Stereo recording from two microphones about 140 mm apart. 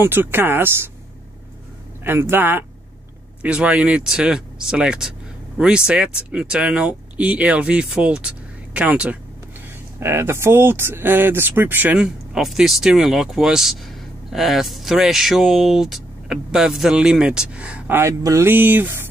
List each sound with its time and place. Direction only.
0.0 s speech: 15° right (ahead or behind)
2.0 s speech: 15° right (ahead or behind)